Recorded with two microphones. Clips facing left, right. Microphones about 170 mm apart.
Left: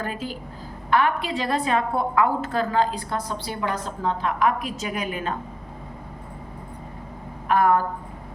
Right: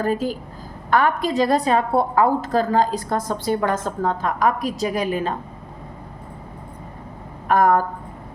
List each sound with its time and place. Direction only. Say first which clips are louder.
0.0 s a woman's voice: right 8 dB; 40° right (ahead or behind)
7.4 s speech: right 3 dB; 40° right (ahead or behind)